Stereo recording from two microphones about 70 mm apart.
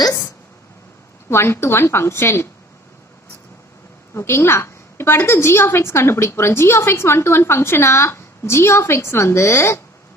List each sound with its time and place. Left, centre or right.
1.3 s a woman's voice: left
4.1 s a woman's voice: left